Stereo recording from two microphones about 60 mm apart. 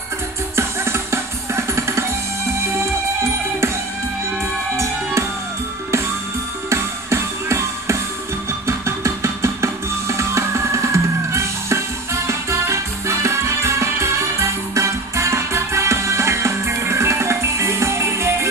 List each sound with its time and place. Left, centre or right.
0.6 s music: right
6.7 s music: right